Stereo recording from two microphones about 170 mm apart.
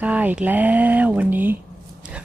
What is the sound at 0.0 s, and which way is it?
Speech, 10° right (ahead or behind).